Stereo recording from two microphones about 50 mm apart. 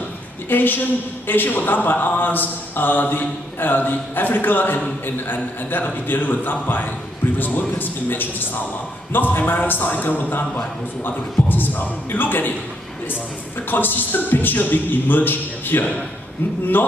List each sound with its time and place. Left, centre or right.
0.5 s a man's voice: left
13.7 s a man's voice: left